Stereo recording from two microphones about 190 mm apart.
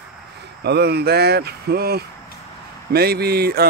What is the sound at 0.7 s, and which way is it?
Speech, 60° right (ahead or behind).